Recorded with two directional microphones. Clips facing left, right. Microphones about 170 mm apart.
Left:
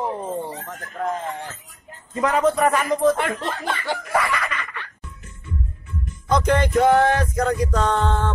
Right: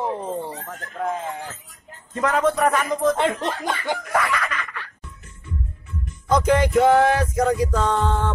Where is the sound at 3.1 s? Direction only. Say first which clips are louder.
Right 3 dB; 20° right (ahead or behind).